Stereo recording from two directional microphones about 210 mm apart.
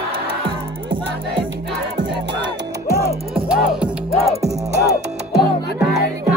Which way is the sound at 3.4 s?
5° right (ahead or behind).